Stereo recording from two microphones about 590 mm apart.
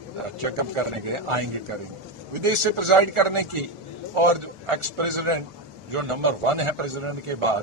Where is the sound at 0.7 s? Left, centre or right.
Right.